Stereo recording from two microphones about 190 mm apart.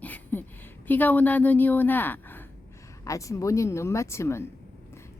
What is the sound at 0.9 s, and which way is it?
A woman's voice, 10° left (ahead or behind).